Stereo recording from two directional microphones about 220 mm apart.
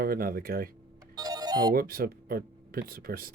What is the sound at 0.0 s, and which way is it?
Speech, 40° right (ahead or behind).